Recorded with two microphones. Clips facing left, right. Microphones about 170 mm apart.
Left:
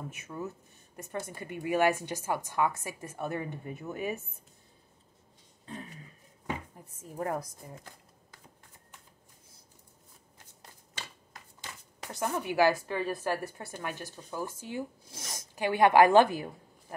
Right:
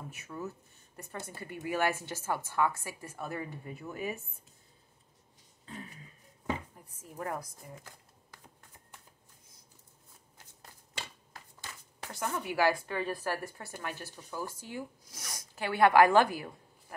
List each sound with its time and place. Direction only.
0.1 s speech: 20° left (ahead or behind)
7.2 s speech: 30° left (ahead or behind)
11.6 s speech: 20° left (ahead or behind)